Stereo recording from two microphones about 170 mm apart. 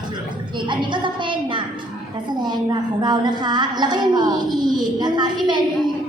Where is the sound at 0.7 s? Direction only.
30° right (ahead or behind).